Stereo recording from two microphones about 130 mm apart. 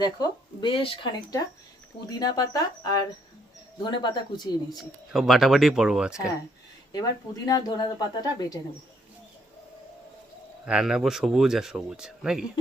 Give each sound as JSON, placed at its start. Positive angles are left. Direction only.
{"t": 0.0, "sound": "a woman's voice", "side_deg": 35}
{"t": 4.8, "sound": "speech", "side_deg": 0}
{"t": 7.4, "sound": "a woman's voice", "side_deg": 30}
{"t": 10.7, "sound": "speech", "side_deg": -5}